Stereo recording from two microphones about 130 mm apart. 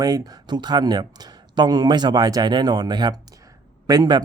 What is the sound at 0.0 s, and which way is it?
Speech, 30° right (ahead or behind).